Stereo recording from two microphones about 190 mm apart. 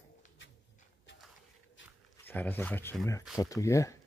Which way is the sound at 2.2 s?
10° left (ahead or behind).